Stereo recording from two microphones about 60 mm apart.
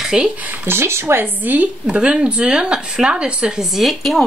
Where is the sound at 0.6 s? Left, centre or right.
Right.